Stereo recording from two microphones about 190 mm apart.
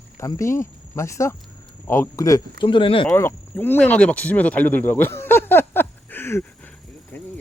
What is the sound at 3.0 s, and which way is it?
Speech, 10° left (ahead or behind).